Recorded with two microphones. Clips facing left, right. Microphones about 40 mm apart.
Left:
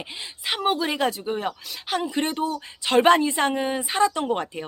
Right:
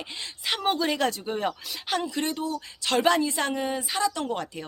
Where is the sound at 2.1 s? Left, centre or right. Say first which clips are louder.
Left 4 dB; left.